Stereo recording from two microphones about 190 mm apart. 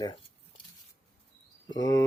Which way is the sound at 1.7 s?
20° left (ahead or behind).